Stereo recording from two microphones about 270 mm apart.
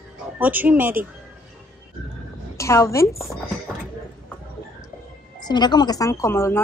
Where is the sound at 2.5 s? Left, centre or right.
Centre.